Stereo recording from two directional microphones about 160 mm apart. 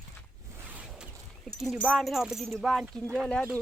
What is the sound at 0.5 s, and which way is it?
Zipper, 10° right (ahead or behind).